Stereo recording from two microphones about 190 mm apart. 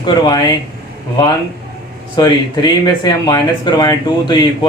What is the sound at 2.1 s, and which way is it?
Speech, 20° left (ahead or behind).